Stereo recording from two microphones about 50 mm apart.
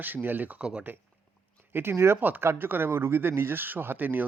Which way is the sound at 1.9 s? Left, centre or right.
Right.